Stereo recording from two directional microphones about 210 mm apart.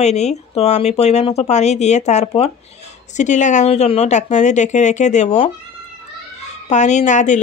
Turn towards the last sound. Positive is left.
turn(degrees=35)  # may be behind; listen again after turning